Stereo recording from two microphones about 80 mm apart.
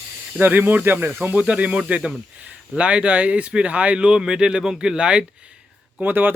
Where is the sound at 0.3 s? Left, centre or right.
Right.